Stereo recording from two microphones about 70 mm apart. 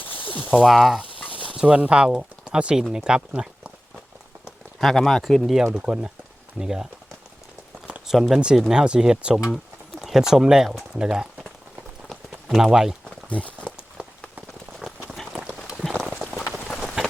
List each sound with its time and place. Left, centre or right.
0.0 s a sound: left
0.6 s speech: centre
1.5 s speech: centre
4.8 s speech: centre
5.7 s speech: centre
8.1 s speech: centre
12.5 s speech: centre
13.3 s speech: centre
15.1 s run: centre
15.4 s run: centre
15.8 s run: centre
16.8 s rain on surface: centre